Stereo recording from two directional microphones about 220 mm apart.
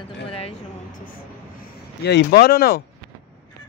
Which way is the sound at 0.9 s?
40° left (ahead or behind).